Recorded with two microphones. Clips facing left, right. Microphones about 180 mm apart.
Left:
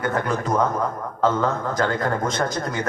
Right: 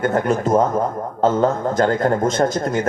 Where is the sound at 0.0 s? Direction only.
25° right (ahead or behind).